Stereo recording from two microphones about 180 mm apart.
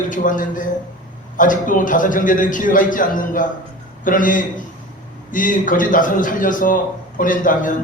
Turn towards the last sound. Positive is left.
turn(degrees=50)  # may be behind; listen again after turning